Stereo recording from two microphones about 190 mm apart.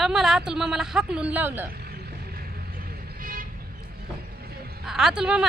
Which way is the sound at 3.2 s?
45° right (ahead or behind).